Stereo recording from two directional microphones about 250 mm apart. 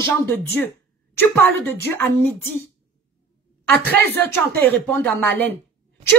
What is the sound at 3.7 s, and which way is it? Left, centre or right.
A woman's voice, centre.